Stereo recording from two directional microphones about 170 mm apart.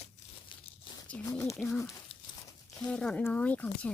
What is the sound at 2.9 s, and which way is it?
Speech, 5° left (ahead or behind).